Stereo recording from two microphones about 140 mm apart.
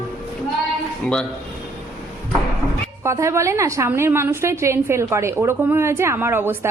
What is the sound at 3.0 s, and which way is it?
A woman's voice, 20° right (ahead or behind).